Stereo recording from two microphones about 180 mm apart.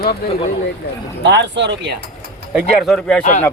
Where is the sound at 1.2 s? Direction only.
80° right.